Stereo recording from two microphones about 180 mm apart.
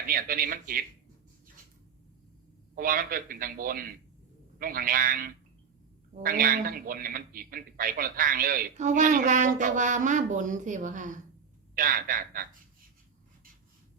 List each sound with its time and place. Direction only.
0.1 s a man's voice: 55° right (ahead or behind)
2.7 s a man's voice: 50° right (ahead or behind)